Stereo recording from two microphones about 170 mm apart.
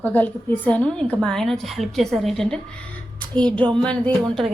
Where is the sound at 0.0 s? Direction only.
10° left (ahead or behind).